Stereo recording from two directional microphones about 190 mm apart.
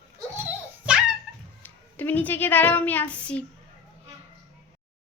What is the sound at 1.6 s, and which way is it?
Speech, 10° left (ahead or behind).